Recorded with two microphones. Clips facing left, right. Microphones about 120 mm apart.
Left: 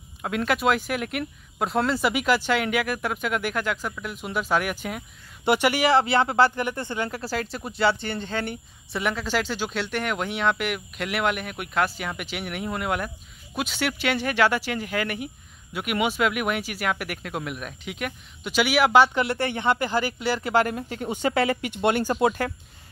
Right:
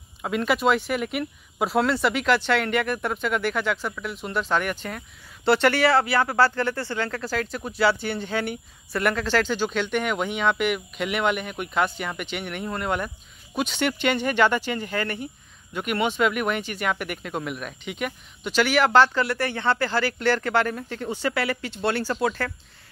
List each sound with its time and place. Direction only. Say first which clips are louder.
0.2 s speech: right 1 dB; centre (ahead or behind)
8.9 s speech: right 3 dB; 5° left (ahead or behind)